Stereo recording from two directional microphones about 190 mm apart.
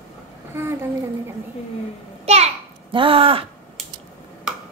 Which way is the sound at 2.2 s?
35° right (ahead or behind).